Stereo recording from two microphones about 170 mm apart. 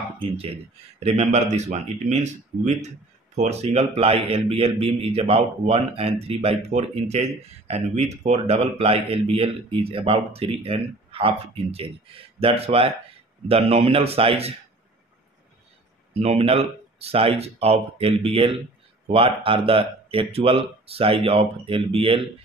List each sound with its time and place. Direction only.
0.9 s a man's voice: 40° right (ahead or behind)
16.1 s a man's voice: 35° right (ahead or behind)